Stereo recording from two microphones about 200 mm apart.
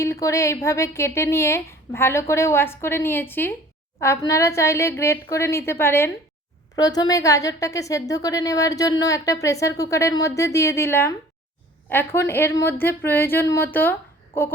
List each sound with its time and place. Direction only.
0.0 s a woman's voice: 15° left (ahead or behind)